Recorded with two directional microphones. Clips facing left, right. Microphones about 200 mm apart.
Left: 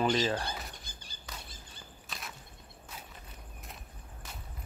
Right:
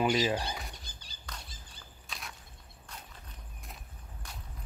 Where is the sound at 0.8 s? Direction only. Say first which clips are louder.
Left 1 dB; 50° left (ahead or behind).